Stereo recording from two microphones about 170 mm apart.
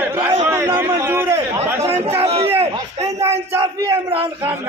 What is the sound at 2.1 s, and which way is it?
Speech, 35° right (ahead or behind).